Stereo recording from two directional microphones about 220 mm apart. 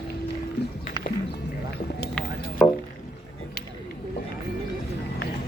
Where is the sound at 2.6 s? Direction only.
Centre (ahead or behind).